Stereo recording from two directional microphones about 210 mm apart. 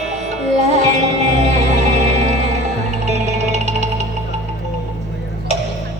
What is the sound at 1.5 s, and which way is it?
Music, 35° right (ahead or behind).